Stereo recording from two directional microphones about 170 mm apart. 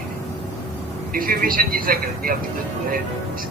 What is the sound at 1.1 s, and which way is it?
A man's voice, 55° right (ahead or behind).